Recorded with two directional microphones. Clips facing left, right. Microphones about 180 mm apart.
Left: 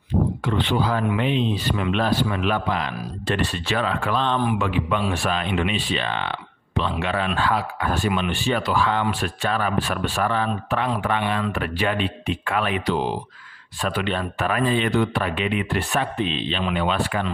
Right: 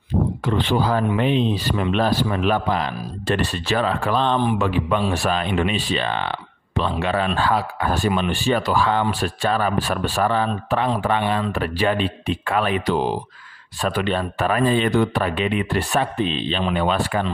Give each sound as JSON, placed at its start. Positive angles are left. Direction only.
{"t": 0.4, "sound": "speech", "side_deg": -40}